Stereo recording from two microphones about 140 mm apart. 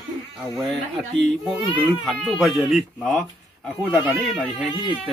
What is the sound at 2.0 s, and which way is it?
Speech, centre (ahead or behind).